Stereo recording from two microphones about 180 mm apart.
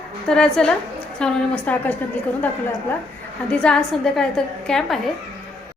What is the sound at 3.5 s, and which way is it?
A woman's voice, 5° left (ahead or behind).